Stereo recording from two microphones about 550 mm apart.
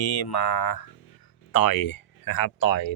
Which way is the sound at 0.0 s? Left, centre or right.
Left.